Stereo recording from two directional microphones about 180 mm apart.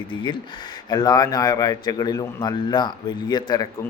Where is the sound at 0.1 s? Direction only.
25° left (ahead or behind).